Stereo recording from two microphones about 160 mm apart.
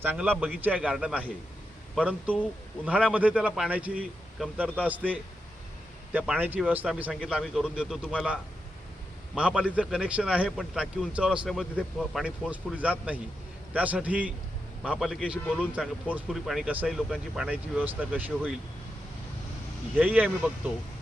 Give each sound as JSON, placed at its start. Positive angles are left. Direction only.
{"t": 0.0, "sound": "speech", "side_deg": -10}
{"t": 2.8, "sound": "speech", "side_deg": -10}
{"t": 6.1, "sound": "speech", "side_deg": -10}
{"t": 12.2, "sound": "speech", "side_deg": -10}
{"t": 15.4, "sound": "speech", "side_deg": 10}
{"t": 15.7, "sound": "speech", "side_deg": -10}
{"t": 20.0, "sound": "speech", "side_deg": -10}